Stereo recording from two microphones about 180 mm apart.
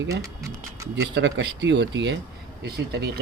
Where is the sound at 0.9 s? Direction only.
70° right (ahead or behind).